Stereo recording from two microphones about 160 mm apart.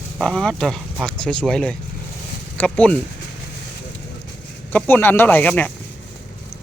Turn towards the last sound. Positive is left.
turn(degrees=10)  # may be behind; listen again after turning